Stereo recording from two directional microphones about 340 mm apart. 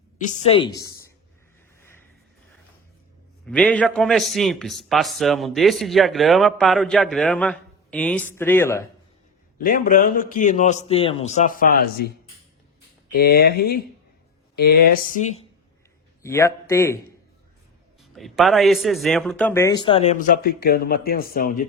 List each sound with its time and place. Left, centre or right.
0.3 s a man's voice: centre
3.4 s a man's voice: centre
9.6 s a man's voice: left
16.2 s a man's voice: centre
18.0 s a man's voice: centre; by 21.7 s left